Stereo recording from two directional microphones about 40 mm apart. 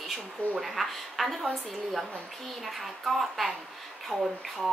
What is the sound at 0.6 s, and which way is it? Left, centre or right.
A woman's voice, centre.